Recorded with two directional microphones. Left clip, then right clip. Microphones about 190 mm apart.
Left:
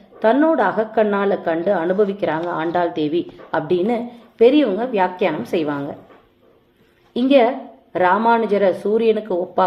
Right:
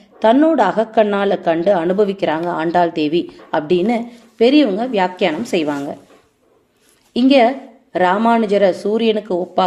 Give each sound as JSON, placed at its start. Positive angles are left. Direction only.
{"t": 0.2, "sound": "a woman's voice", "side_deg": -40}
{"t": 7.1, "sound": "a woman's voice", "side_deg": -35}